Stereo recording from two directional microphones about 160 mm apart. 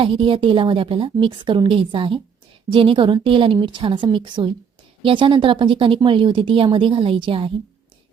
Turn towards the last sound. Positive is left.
turn(degrees=-35)  # may be behind; listen again after turning